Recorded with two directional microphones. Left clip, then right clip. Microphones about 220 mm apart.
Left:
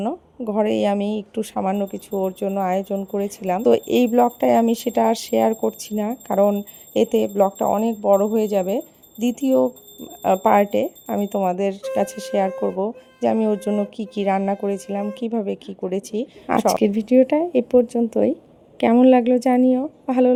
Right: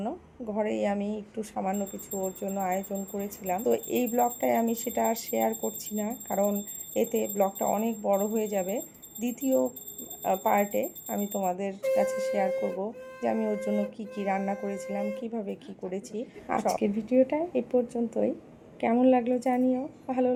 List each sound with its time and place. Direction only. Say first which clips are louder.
0.0 s speech: left 9 dB; 40° left (ahead or behind)